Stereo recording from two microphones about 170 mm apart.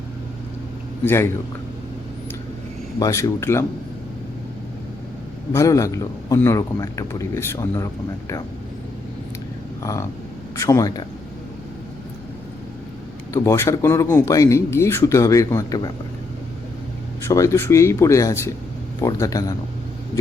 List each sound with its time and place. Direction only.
1.0 s speech: 15° left (ahead or behind)
3.0 s speech: 15° left (ahead or behind)
5.5 s speech: 20° left (ahead or behind)
9.8 s speech: 20° left (ahead or behind)
13.3 s speech: 15° left (ahead or behind)
17.2 s speech: 15° left (ahead or behind)